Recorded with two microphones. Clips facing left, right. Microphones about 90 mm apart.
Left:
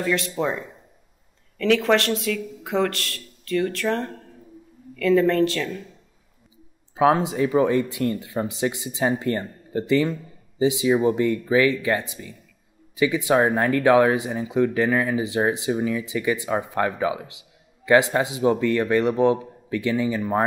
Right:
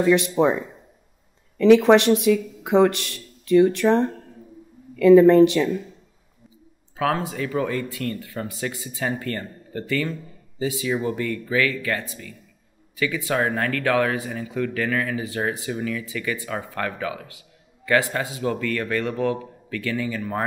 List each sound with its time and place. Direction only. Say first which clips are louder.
0.0 s speech: right 6 dB; 15° right (ahead or behind)
1.6 s speech: right 6 dB; 20° right (ahead or behind)
7.0 s speech: left 5 dB; 20° left (ahead or behind)